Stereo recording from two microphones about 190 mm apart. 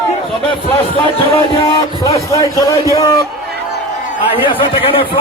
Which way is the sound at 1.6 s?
20° left (ahead or behind).